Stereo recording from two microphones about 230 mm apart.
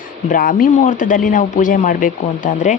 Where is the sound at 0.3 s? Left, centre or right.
Left.